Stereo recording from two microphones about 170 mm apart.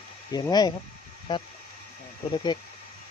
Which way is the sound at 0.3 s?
25° left (ahead or behind).